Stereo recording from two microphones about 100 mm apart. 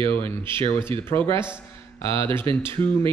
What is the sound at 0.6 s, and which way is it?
Speech, 25° left (ahead or behind).